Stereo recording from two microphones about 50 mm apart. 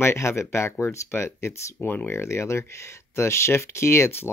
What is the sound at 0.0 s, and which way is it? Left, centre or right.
Speech, left.